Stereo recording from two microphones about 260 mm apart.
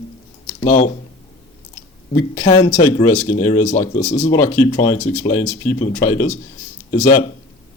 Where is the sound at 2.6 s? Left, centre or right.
Left.